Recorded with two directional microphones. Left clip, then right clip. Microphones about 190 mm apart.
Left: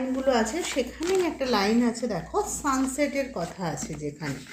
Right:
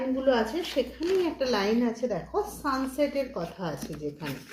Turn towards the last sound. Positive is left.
turn(degrees=25)  # may be behind; listen again after turning